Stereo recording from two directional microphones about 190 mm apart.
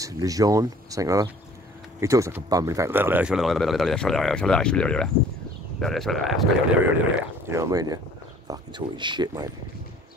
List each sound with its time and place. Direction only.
0.0 s speech: 20° right (ahead or behind); by 6.9 s centre (ahead or behind)
7.4 s speech: 15° right (ahead or behind)